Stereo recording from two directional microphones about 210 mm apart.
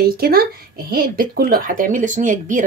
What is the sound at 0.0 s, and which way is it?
Speech, 45° right (ahead or behind).